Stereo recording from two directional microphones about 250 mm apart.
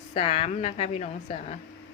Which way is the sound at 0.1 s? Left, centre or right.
Left.